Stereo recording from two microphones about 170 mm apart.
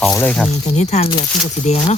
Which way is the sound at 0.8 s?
40° left (ahead or behind).